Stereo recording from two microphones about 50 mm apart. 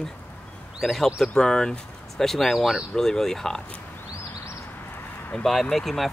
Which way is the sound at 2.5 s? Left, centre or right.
Centre.